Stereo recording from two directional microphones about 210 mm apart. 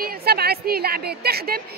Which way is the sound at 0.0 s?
45° right (ahead or behind).